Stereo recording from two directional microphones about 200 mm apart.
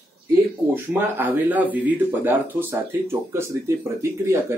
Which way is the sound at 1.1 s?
10° right (ahead or behind).